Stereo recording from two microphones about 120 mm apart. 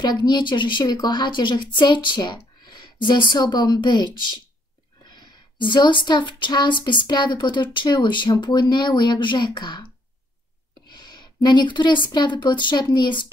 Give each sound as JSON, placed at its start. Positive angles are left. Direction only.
{"t": 0.0, "sound": "speech", "side_deg": 35}
{"t": 5.1, "sound": "speech", "side_deg": 40}
{"t": 10.9, "sound": "a woman's voice", "side_deg": 40}